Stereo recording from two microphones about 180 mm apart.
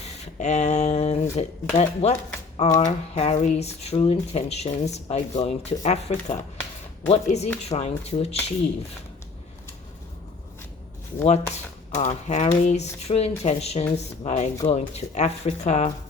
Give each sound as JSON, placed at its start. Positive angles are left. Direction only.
{"t": 0.0, "sound": "speech", "side_deg": 40}
{"t": 11.5, "sound": "speech", "side_deg": 40}